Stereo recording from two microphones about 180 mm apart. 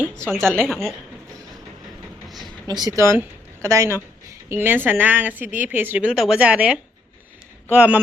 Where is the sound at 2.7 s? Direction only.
20° right (ahead or behind).